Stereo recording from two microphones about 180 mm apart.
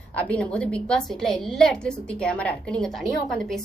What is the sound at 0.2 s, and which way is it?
A woman's voice, 5° left (ahead or behind).